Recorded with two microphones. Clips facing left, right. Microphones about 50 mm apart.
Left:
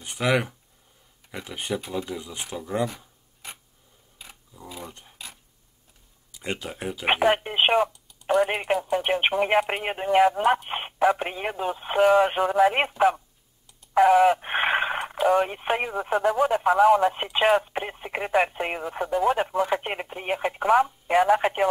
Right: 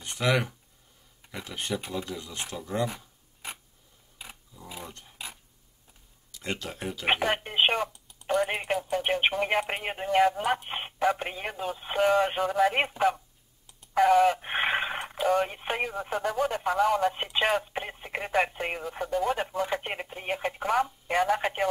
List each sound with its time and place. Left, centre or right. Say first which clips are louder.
0.0 s speech: left 3 dB; centre
5.2 s a sound: right 2 dB; centre
6.3 s speech: left 2 dB; centre